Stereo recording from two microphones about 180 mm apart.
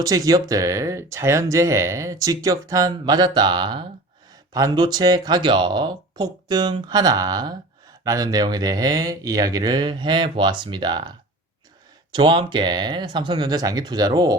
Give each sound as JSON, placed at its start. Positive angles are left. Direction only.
{"t": 0.0, "sound": "speech", "side_deg": -20}
{"t": 12.1, "sound": "speech", "side_deg": -25}